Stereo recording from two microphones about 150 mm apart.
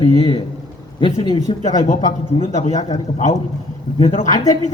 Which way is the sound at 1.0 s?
30° left (ahead or behind).